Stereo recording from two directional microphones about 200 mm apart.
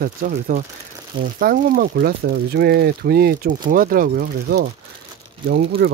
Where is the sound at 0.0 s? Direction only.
45° right (ahead or behind).